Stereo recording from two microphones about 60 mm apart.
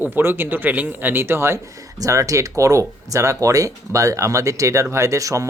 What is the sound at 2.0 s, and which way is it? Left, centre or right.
Speech, right.